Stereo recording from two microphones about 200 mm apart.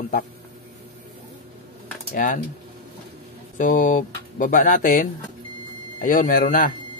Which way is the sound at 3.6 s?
40° left (ahead or behind).